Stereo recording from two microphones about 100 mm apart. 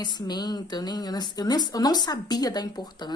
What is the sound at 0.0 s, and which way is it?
A woman's voice, 45° left (ahead or behind).